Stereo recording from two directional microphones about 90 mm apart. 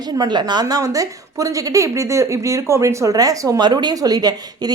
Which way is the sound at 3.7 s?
50° right (ahead or behind).